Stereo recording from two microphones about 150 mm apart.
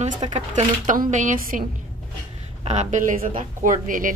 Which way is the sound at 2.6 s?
45° right (ahead or behind).